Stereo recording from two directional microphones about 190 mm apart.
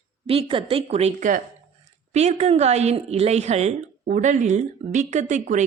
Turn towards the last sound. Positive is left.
turn(degrees=-40)  # may be behind; listen again after turning